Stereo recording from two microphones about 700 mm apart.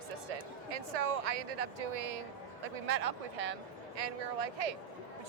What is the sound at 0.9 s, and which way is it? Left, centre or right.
Speech, right.